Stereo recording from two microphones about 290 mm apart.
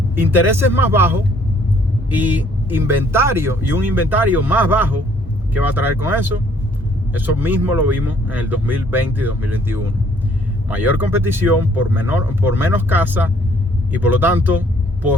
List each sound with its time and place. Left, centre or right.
0.2 s speech: centre